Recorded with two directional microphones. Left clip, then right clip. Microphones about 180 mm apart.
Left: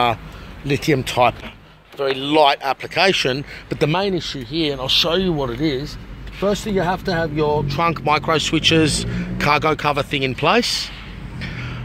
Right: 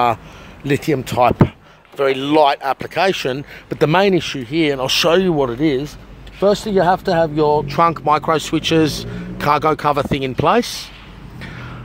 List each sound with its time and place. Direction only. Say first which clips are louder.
0.7 s speech: right 1 dB; 20° right (ahead or behind)
2.0 s speech: right 4 dB; 30° right (ahead or behind)
2.3 s speech: even; 15° right (ahead or behind)
3.7 s speech: right 5 dB; 20° right (ahead or behind)
4.0 s speech: right 6 dB; 40° right (ahead or behind)
7.8 s speech: right 3 dB; 15° right (ahead or behind)
11.4 s a sound: left 2 dB; 15° right (ahead or behind)